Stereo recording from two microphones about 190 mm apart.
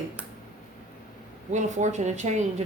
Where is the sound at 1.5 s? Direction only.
40° right (ahead or behind).